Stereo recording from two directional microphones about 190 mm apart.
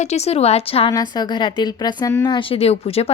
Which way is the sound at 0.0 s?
35° left (ahead or behind).